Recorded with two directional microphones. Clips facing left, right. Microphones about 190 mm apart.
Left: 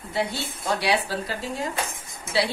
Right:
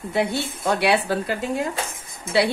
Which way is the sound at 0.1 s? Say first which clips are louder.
Right 4 dB; 60° right (ahead or behind).